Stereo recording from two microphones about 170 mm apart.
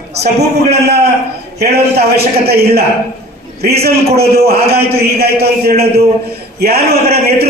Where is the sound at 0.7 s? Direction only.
75° right (ahead or behind).